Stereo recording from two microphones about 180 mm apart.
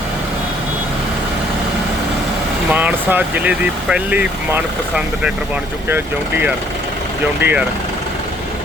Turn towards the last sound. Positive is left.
turn(degrees=-10)  # may be behind; listen again after turning